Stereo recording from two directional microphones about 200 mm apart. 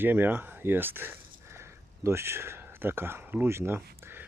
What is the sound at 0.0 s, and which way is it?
Speech, 10° right (ahead or behind).